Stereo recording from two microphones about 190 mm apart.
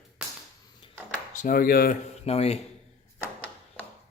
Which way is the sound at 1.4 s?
50° left (ahead or behind).